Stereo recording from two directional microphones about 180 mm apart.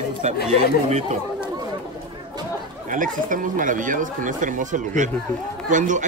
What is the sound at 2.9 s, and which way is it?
Speech, 50° right (ahead or behind).